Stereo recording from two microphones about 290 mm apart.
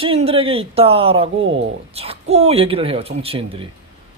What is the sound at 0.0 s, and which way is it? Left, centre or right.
A man's voice, centre.